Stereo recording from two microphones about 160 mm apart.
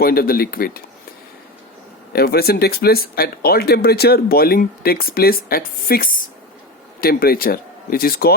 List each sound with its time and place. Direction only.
0.0 s speech: 70° left (ahead or behind)
2.1 s speech: 75° left (ahead or behind)